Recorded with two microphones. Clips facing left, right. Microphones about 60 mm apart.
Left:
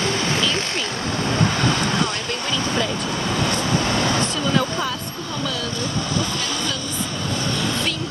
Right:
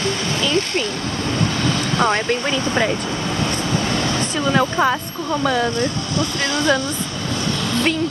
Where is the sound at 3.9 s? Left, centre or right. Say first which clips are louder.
Even; left.